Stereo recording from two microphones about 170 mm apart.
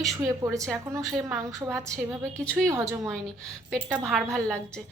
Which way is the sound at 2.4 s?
5° left (ahead or behind).